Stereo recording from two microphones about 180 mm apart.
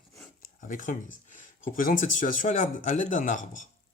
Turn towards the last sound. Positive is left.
turn(degrees=45)  # may be behind; listen again after turning